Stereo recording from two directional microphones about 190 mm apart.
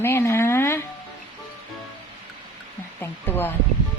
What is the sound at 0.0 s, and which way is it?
Speech, 10° left (ahead or behind).